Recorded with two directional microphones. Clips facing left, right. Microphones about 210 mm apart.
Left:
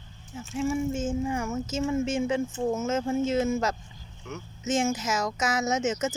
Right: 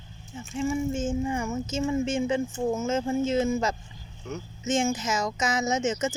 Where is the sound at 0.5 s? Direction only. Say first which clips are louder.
Even; 5° left (ahead or behind).